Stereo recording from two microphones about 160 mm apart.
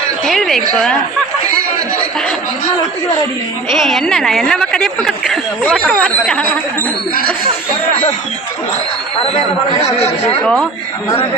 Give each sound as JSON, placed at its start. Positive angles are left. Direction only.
{"t": 0.3, "sound": "a woman's voice", "side_deg": 0}
{"t": 3.7, "sound": "a woman's voice", "side_deg": 0}
{"t": 9.1, "sound": "speech", "side_deg": 35}
{"t": 10.4, "sound": "a woman's voice", "side_deg": 5}